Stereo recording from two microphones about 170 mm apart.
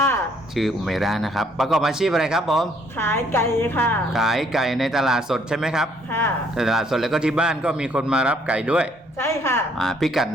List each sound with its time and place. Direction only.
0.5 s a man's voice: centre (ahead or behind)
3.0 s a woman's voice: 15° left (ahead or behind)
4.1 s a man's voice: centre (ahead or behind)
6.1 s a woman's voice: 10° left (ahead or behind)
6.6 s a man's voice: centre (ahead or behind)
9.1 s a woman's voice: 15° left (ahead or behind)
9.7 s a man's voice: centre (ahead or behind)